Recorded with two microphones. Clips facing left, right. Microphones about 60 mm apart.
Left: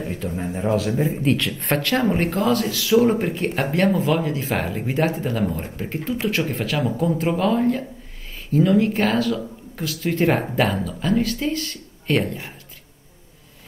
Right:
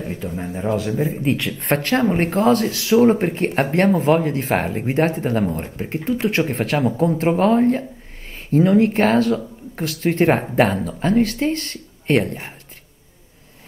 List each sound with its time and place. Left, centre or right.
0.3 s speech: centre
1.7 s speech: right